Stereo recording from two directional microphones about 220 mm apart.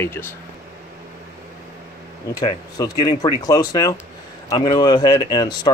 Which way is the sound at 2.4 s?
20° left (ahead or behind).